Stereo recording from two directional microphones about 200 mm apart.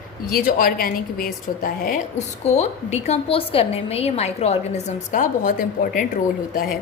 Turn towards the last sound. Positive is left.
turn(degrees=45)  # may be behind; listen again after turning